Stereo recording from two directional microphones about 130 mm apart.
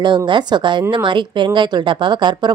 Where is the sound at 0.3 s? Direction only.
35° right (ahead or behind).